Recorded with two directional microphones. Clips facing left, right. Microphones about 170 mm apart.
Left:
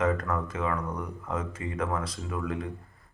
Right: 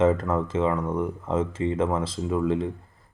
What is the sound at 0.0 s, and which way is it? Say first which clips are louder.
Speech: right 6 dB; 25° right (ahead or behind).